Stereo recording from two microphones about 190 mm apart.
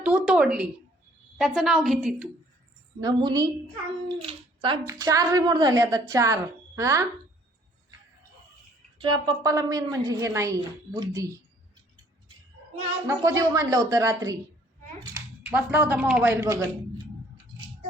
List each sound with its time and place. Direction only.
0.0 s a woman's voice: 5° right (ahead or behind)
3.0 s a woman's voice: 20° right (ahead or behind)
4.3 s a sound: 25° right (ahead or behind)
4.9 s a woman's voice: 15° right (ahead or behind)
9.0 s a woman's voice: 25° right (ahead or behind)
13.1 s a woman's voice: 20° right (ahead or behind)
15.4 s a woman's voice: 10° right (ahead or behind)